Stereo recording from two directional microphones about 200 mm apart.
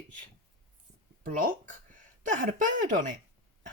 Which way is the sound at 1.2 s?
45° right (ahead or behind).